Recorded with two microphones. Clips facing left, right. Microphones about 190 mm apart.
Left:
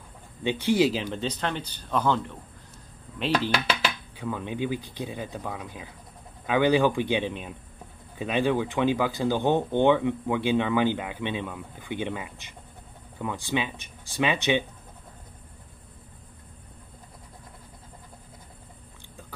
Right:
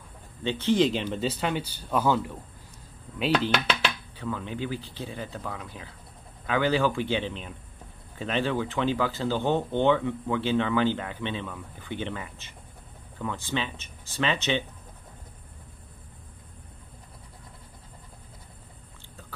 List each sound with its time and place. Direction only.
0.4 s speech: 15° left (ahead or behind); by 3.5 s 5° right (ahead or behind)
3.5 s speech: 5° left (ahead or behind)